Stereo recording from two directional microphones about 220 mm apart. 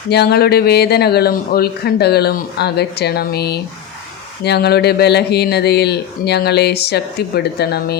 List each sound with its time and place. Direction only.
0.1 s a man's voice: 45° left (ahead or behind)